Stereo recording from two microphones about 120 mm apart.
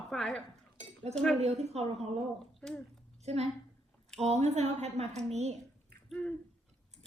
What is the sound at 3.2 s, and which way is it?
A woman's voice, 60° right (ahead or behind).